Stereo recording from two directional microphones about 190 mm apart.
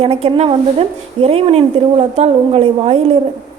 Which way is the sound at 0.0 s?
30° right (ahead or behind).